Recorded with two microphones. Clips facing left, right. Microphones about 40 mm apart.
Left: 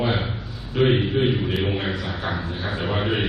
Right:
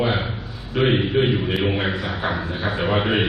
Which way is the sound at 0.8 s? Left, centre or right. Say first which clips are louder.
Right 1 dB; centre.